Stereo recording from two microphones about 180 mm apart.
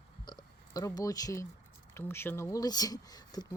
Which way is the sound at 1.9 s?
15° left (ahead or behind).